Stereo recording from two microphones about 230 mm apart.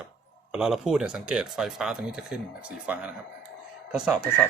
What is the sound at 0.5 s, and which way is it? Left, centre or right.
Speech, centre.